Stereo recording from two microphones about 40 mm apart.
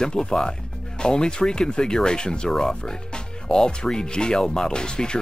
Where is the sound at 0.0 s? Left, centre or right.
Centre.